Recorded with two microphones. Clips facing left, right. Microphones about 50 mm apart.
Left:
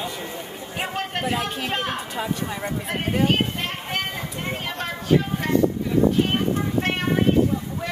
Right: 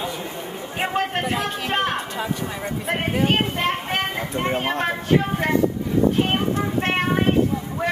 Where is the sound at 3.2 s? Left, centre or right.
Right.